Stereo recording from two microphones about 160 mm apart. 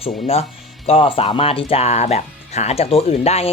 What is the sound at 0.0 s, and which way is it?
Speech, 40° left (ahead or behind).